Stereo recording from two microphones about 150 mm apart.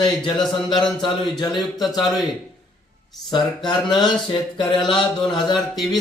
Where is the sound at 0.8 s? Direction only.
30° left (ahead or behind).